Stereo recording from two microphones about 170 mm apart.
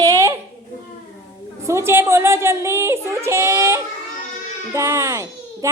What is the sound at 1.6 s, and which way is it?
A child's voice, 15° right (ahead or behind).